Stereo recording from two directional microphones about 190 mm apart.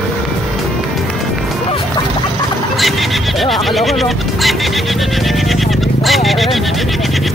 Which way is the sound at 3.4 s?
Centre (ahead or behind).